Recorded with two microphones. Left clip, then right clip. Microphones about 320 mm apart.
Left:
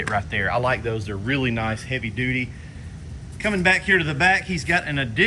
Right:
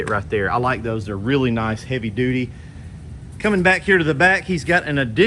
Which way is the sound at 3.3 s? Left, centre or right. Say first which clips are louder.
Right 3 dB; centre.